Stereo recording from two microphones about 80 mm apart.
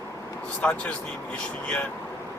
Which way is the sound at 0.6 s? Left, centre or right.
Centre.